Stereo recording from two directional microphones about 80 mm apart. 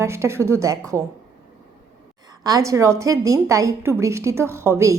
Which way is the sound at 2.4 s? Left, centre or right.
Right.